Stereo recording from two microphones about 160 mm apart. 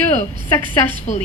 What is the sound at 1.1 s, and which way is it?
Speech, 45° left (ahead or behind).